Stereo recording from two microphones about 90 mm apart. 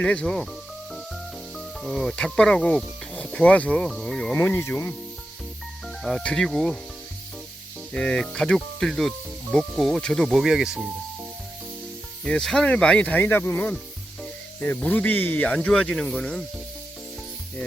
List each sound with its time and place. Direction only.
0.0 s speech: 10° left (ahead or behind)
0.9 s snake: centre (ahead or behind)
4.0 s speech: 5° left (ahead or behind)
4.4 s speech: 25° left (ahead or behind)
6.0 s speech: 5° left (ahead or behind)
7.9 s speech: 10° left (ahead or behind); by 10.8 s 5° right (ahead or behind)
12.2 s speech: 5° left (ahead or behind)